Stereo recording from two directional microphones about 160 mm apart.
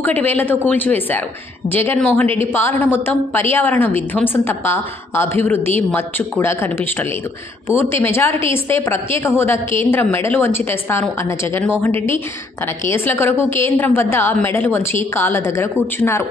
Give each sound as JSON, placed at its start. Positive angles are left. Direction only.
{"t": 0.0, "sound": "a woman's voice", "side_deg": 10}
{"t": 8.3, "sound": "a woman's voice", "side_deg": -35}
{"t": 8.6, "sound": "a woman's voice", "side_deg": 15}